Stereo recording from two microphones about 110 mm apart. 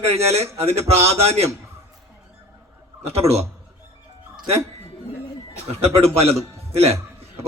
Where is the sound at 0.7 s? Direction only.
70° right (ahead or behind).